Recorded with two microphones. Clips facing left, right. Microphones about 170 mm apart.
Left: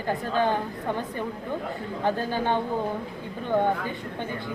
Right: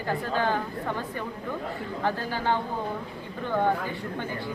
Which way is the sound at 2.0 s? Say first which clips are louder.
Left 2 dB; 20° left (ahead or behind).